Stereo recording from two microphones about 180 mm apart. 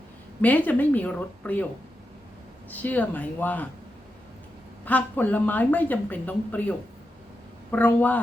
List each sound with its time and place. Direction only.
0.4 s speech: 10° left (ahead or behind)
2.6 s speech: 10° left (ahead or behind)
4.9 s speech: 10° left (ahead or behind)